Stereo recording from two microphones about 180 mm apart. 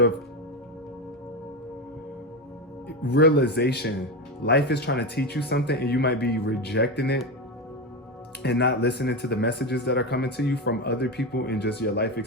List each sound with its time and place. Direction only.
3.0 s speech: 65° left (ahead or behind)
8.4 s speech: 65° left (ahead or behind)